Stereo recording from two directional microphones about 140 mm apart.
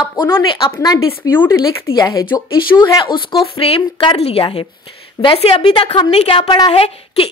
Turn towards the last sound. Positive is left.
turn(degrees=45)  # may be behind; listen again after turning